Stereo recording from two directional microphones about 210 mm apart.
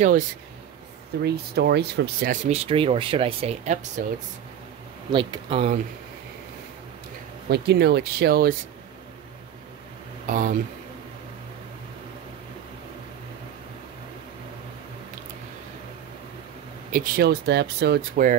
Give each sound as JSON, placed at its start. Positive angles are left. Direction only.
{"t": 1.2, "sound": "speech", "side_deg": -50}
{"t": 5.1, "sound": "speech", "side_deg": -25}
{"t": 7.4, "sound": "speech", "side_deg": -50}
{"t": 10.2, "sound": "speech", "side_deg": -40}
{"t": 16.9, "sound": "speech", "side_deg": -45}